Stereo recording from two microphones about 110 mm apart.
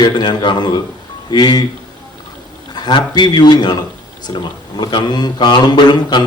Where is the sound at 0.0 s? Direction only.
40° left (ahead or behind).